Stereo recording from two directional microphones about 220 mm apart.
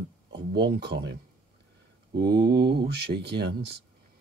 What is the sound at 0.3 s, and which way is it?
Speech, 50° right (ahead or behind).